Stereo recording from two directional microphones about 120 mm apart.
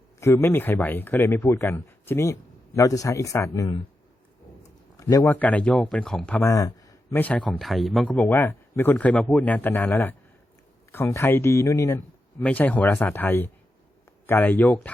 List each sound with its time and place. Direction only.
0.2 s speech: 20° left (ahead or behind)
4.9 s speech: 30° left (ahead or behind)
5.3 s a man's voice: 10° left (ahead or behind)
6.4 s speech: 30° left (ahead or behind)
7.1 s a man's voice: 15° left (ahead or behind)
7.6 s speech: centre (ahead or behind)
8.0 s a man's voice: 10° left (ahead or behind)
12.4 s a man's voice: 10° left (ahead or behind)